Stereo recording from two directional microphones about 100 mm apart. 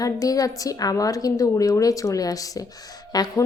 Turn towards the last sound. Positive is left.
turn(degrees=40)  # may be behind; listen again after turning